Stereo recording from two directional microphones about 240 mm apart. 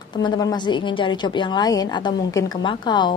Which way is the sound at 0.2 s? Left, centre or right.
Centre.